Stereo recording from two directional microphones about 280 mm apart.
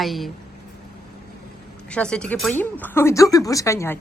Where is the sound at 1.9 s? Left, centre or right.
Centre.